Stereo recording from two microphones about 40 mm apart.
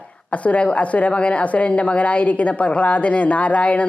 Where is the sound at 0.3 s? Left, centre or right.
Left.